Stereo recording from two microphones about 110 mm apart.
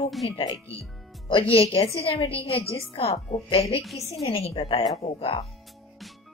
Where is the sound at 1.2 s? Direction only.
55° left (ahead or behind).